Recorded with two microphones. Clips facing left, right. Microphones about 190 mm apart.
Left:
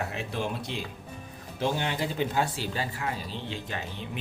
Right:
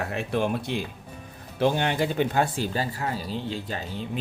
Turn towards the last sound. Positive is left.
turn(degrees=-35)  # may be behind; listen again after turning